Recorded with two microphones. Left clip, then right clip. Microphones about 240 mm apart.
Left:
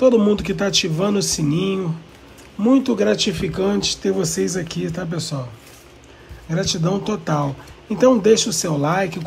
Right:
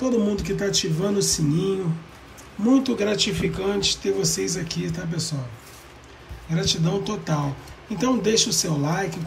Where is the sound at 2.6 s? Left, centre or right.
Centre.